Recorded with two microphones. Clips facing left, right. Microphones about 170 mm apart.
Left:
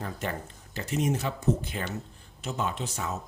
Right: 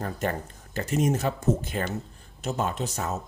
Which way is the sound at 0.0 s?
45° right (ahead or behind).